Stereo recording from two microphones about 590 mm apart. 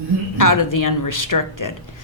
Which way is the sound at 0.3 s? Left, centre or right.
Left.